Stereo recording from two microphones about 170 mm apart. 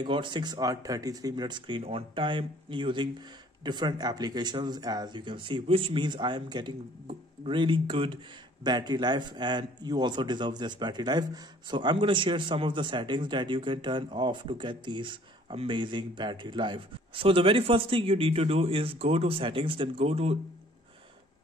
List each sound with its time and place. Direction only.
0.0 s a man's voice: 25° right (ahead or behind)